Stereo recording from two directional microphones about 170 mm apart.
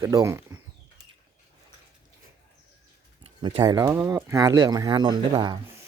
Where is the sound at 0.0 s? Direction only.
20° right (ahead or behind).